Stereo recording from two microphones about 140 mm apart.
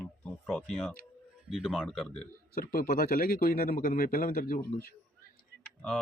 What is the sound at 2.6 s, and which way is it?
A man's voice, 85° left.